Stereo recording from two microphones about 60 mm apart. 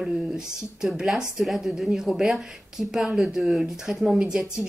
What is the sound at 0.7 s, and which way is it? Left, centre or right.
Speech, centre.